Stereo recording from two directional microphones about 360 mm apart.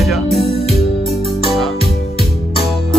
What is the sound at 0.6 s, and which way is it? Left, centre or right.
Music, centre.